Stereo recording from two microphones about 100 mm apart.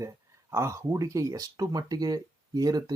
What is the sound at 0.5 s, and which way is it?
Speech, 30° right (ahead or behind).